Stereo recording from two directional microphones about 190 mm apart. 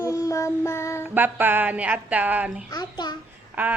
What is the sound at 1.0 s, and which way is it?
Speech, 10° right (ahead or behind).